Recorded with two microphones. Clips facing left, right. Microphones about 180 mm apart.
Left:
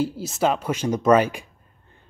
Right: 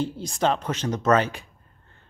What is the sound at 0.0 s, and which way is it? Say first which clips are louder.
Speech: left 2 dB; 5° left (ahead or behind).